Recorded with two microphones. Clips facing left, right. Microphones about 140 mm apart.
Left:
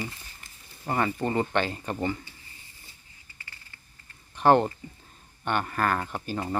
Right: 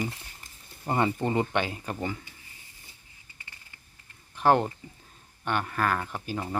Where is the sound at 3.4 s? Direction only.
20° right (ahead or behind).